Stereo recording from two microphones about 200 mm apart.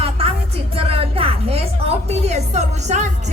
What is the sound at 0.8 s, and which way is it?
Music, 30° right (ahead or behind).